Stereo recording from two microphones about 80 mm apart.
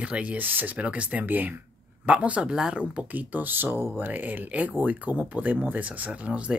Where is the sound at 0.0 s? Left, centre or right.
Centre.